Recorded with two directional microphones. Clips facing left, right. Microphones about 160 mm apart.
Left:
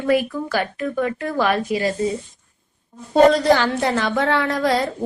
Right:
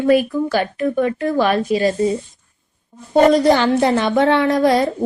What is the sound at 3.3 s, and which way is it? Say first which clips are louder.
A woman's voice: right 4 dB; 20° right (ahead or behind).